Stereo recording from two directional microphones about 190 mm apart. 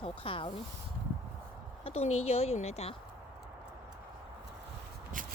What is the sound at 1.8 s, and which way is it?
A woman's voice, 30° left (ahead or behind).